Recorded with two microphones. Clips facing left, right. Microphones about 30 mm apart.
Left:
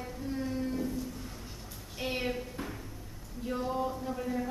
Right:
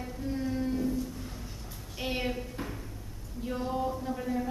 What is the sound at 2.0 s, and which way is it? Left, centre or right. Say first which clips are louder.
A woman's voice: right 1 dB; centre.